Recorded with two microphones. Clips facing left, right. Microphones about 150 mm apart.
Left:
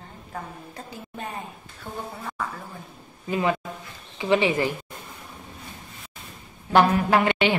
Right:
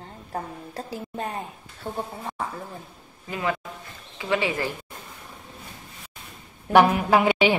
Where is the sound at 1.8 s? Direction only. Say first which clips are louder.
Right 3 dB; 30° right (ahead or behind).